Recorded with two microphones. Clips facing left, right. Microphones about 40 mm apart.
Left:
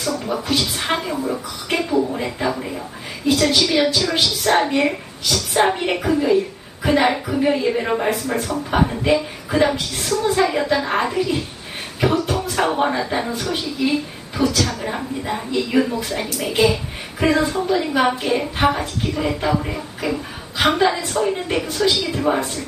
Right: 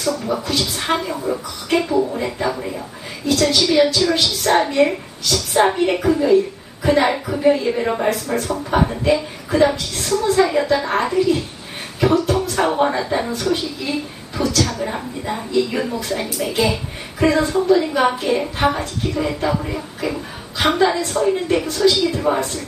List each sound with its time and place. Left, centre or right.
0.0 s speech: centre
0.4 s speech: centre
0.7 s a woman's voice: centre
21.6 s speech: centre
22.1 s a woman's voice: centre